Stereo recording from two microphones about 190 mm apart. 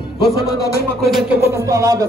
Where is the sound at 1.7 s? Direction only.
20° right (ahead or behind).